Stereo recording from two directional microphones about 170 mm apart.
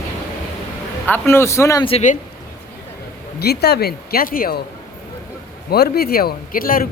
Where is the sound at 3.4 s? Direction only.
70° left (ahead or behind).